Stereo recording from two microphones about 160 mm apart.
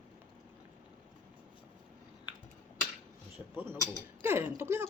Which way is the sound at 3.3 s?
15° right (ahead or behind).